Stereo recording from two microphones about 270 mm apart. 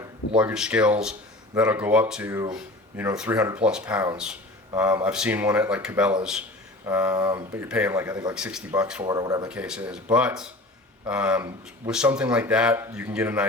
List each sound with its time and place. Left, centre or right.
0.0 s speech: centre
9.5 s speech: centre